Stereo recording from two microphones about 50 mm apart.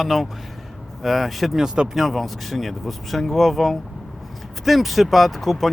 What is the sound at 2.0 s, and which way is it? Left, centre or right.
Speech, centre.